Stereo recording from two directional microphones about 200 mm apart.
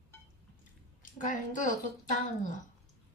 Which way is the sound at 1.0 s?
40° left (ahead or behind).